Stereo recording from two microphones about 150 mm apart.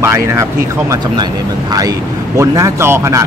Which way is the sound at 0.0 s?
20° right (ahead or behind).